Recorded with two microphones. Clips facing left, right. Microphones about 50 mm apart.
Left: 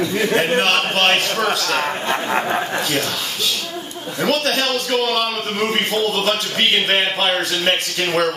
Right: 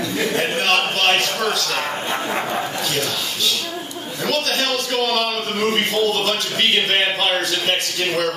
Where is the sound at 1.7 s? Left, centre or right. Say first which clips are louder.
Left 3 dB; centre.